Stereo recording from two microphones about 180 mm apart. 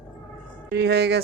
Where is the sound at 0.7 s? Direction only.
70° right (ahead or behind).